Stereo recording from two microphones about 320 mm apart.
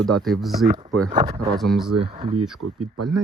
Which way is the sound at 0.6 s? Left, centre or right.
Centre.